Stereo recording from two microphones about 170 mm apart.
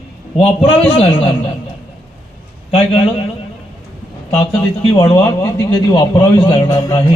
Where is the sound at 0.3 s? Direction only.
35° left (ahead or behind).